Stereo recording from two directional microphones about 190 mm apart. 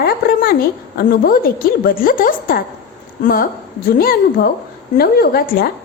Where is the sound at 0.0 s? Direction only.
50° left (ahead or behind).